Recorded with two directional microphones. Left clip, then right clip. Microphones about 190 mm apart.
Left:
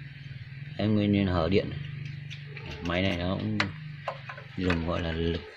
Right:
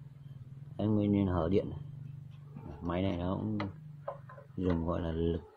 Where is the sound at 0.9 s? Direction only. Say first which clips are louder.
Left 4 dB; 10° right (ahead or behind).